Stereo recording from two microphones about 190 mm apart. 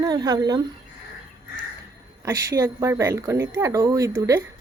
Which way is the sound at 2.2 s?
15° right (ahead or behind).